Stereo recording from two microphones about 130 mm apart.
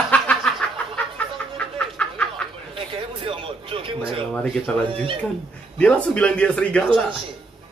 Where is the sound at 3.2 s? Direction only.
45° right (ahead or behind).